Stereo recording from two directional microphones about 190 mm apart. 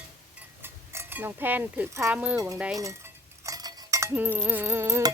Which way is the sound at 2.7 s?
15° right (ahead or behind).